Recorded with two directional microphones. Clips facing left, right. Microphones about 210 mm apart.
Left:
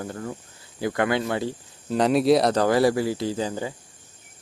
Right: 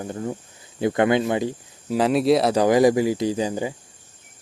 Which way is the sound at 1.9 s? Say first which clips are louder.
Even; centre (ahead or behind).